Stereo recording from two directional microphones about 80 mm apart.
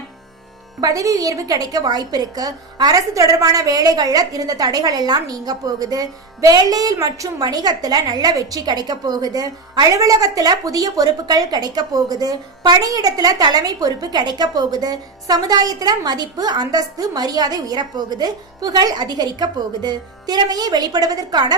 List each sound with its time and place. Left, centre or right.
0.8 s a woman's voice: right